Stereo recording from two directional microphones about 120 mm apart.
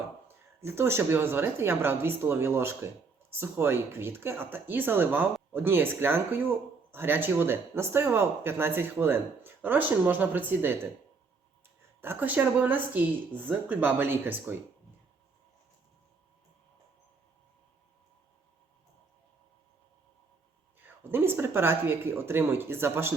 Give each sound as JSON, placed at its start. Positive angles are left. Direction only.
{"t": 0.3, "sound": "speech", "side_deg": -20}
{"t": 11.9, "sound": "speech", "side_deg": -15}
{"t": 20.7, "sound": "speech", "side_deg": -15}